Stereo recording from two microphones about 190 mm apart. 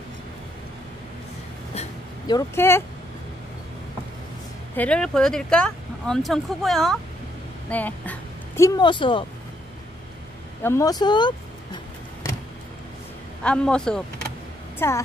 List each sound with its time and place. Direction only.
2.2 s speech: 15° left (ahead or behind)
4.7 s a woman's voice: 5° left (ahead or behind); by 9.2 s 25° left (ahead or behind)
10.6 s speech: 15° left (ahead or behind)
13.4 s speech: 5° left (ahead or behind)